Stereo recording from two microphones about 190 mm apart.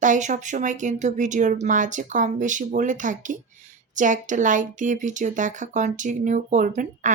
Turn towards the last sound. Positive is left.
turn(degrees=-40)  # may be behind; listen again after turning